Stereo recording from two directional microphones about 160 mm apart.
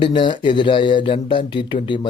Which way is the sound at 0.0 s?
30° left (ahead or behind).